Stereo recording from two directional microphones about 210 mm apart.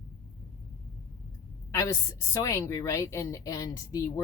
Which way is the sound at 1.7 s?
15° left (ahead or behind).